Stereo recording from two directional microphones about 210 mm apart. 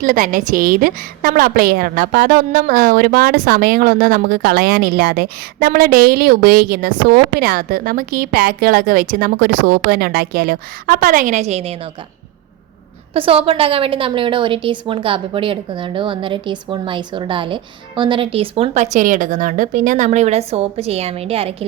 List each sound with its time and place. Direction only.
0.0 s a woman's voice: 40° right (ahead or behind)
13.1 s a woman's voice: 25° right (ahead or behind)